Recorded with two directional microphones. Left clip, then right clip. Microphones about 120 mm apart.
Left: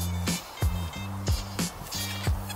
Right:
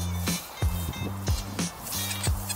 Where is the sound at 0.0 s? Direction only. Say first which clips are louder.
Even; centre (ahead or behind).